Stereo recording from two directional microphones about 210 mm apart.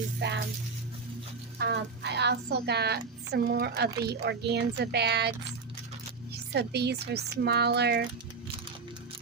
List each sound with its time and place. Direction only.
0.2 s music: 55° right (ahead or behind)
1.5 s a woman's voice: 50° right (ahead or behind)
6.5 s a woman's voice: 50° right (ahead or behind)